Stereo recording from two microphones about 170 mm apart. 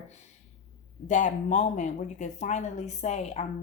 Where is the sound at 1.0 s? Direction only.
45° left (ahead or behind).